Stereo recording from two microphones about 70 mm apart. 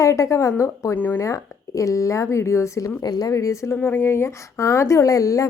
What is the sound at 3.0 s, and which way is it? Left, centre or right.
Speech, left.